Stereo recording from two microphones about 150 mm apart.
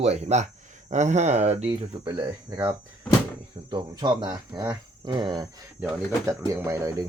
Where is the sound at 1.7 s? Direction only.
30° right (ahead or behind).